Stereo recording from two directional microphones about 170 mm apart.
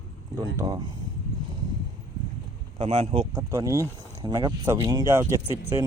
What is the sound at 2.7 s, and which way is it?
Speech, 35° right (ahead or behind).